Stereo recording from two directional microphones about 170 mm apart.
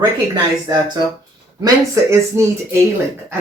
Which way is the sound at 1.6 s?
20° right (ahead or behind).